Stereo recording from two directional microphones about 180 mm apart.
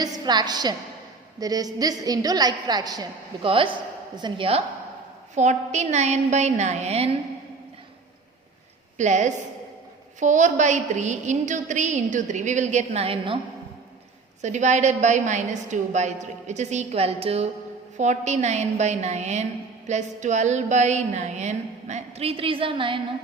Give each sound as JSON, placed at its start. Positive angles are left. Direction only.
{"t": 0.0, "sound": "a woman's voice", "side_deg": -20}
{"t": 5.3, "sound": "a woman's voice", "side_deg": -40}
{"t": 9.0, "sound": "a woman's voice", "side_deg": -40}
{"t": 14.4, "sound": "a woman's voice", "side_deg": -40}